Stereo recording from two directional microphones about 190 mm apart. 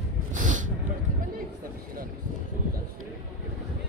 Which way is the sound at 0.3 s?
40° right (ahead or behind).